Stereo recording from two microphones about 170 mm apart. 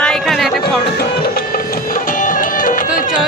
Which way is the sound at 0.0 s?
Centre (ahead or behind).